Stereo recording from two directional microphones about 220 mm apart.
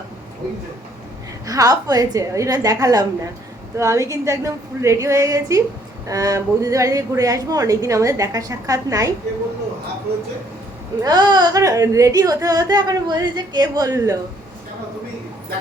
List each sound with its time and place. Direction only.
1.5 s yodeling: 15° right (ahead or behind)
11.0 s yodeling: 20° right (ahead or behind)